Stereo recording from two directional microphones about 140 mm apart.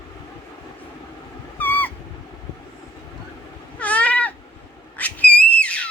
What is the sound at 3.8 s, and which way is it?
Cat, 10° left (ahead or behind).